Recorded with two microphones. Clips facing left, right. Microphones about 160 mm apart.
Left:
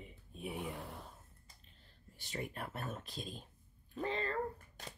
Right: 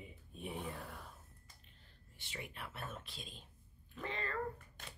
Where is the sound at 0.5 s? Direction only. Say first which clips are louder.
Left 2 dB; 15° left (ahead or behind).